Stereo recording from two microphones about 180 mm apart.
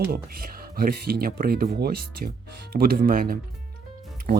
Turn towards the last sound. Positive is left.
turn(degrees=-55)  # may be behind; listen again after turning